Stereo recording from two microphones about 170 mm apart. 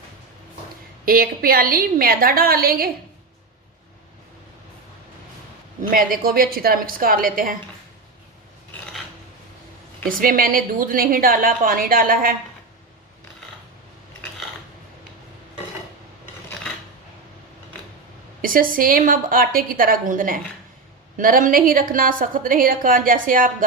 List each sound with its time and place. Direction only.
1.0 s a woman's voice: 60° right (ahead or behind)
5.9 s a woman's voice: 60° right (ahead or behind)
10.1 s a woman's voice: 55° right (ahead or behind)
18.4 s a woman's voice: 55° right (ahead or behind)